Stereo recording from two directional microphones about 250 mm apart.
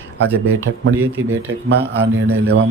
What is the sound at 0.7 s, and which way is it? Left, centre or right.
Speech, right.